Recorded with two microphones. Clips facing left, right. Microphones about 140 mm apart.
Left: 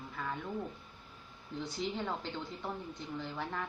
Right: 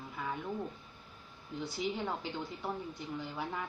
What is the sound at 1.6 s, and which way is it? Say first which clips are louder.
A woman's voice: right 1 dB; 10° right (ahead or behind).